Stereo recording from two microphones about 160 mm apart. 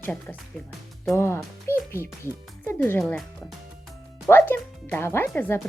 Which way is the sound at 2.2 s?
15° left (ahead or behind).